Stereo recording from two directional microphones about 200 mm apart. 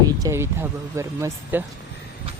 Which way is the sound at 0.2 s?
15° right (ahead or behind).